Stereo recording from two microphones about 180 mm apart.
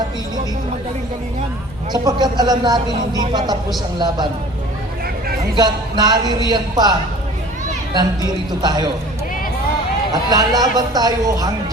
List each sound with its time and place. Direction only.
1.9 s speech: 20° right (ahead or behind)
5.5 s speech: 20° right (ahead or behind)
8.6 s speech: 25° right (ahead or behind)
10.1 s speech: 20° right (ahead or behind)